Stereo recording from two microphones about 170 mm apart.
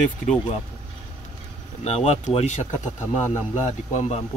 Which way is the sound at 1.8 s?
40° left (ahead or behind).